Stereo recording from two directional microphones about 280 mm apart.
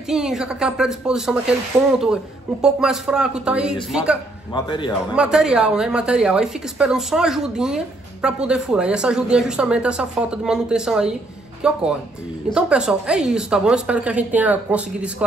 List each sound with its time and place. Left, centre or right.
0.1 s a woman's voice: centre
4.6 s a man's voice: centre
5.1 s a woman's voice: centre